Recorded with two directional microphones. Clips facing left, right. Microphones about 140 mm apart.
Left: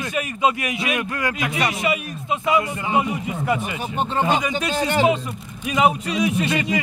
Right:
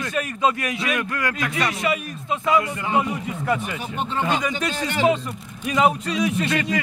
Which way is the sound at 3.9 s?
35° left (ahead or behind).